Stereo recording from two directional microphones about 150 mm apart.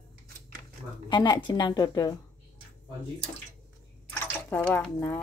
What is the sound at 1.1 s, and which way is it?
A woman's voice, 30° left (ahead or behind).